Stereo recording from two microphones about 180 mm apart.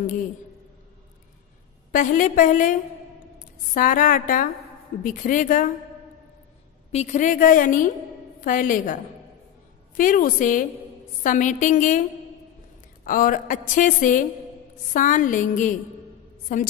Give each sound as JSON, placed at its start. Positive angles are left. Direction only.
{"t": 1.9, "sound": "a woman's voice", "side_deg": 45}
{"t": 3.7, "sound": "a woman's voice", "side_deg": 45}
{"t": 6.9, "sound": "a woman's voice", "side_deg": 40}
{"t": 13.0, "sound": "a woman's voice", "side_deg": 50}